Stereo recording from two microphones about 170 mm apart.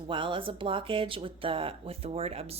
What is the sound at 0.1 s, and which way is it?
A woman's voice, 30° right (ahead or behind).